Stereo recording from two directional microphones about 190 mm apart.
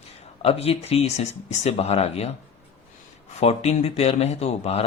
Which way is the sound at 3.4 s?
35° left (ahead or behind).